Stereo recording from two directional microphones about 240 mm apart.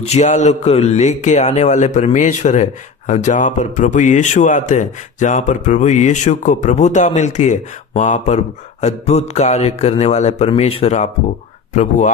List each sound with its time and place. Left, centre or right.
0.0 s a man's voice: left